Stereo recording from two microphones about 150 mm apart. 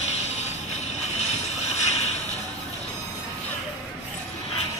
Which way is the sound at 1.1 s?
45° left (ahead or behind).